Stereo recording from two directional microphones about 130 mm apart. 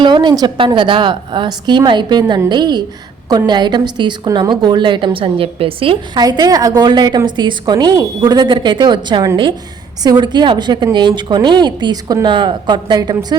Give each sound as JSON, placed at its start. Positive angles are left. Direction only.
{"t": 0.0, "sound": "a woman's voice", "side_deg": -35}
{"t": 6.2, "sound": "a woman's voice", "side_deg": -30}